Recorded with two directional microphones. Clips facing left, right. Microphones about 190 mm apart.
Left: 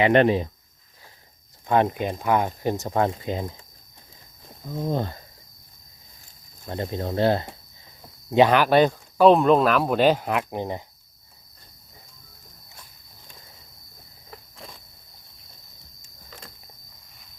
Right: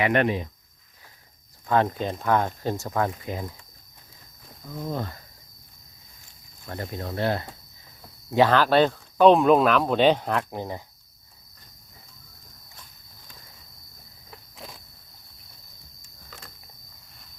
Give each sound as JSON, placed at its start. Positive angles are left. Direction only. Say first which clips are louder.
{"t": 0.0, "sound": "speech", "louder": "left 5 dB", "side_deg": 30}
{"t": 1.6, "sound": "speech", "louder": "left 2 dB", "side_deg": 20}
{"t": 4.7, "sound": "speech", "louder": "left 5 dB", "side_deg": 30}
{"t": 6.7, "sound": "speech", "louder": "left 5 dB", "side_deg": 25}
{"t": 8.3, "sound": "speech", "louder": "left 2 dB", "side_deg": 15}
{"t": 9.2, "sound": "speech", "louder": "even", "side_deg": 0}
{"t": 14.5, "sound": "a sound", "louder": "right 3 dB", "side_deg": 0}